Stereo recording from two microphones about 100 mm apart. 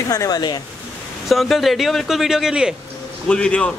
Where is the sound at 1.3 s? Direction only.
Centre (ahead or behind).